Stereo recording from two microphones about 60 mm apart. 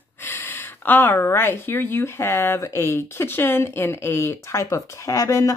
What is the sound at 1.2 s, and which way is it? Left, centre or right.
Speech, left.